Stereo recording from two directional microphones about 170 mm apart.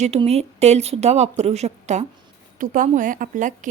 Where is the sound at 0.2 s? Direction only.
40° right (ahead or behind).